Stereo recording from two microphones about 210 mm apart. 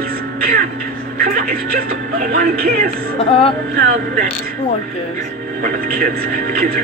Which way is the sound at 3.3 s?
25° left (ahead or behind).